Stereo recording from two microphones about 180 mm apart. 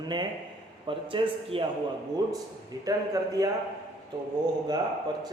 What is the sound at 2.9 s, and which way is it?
Speech, 20° right (ahead or behind).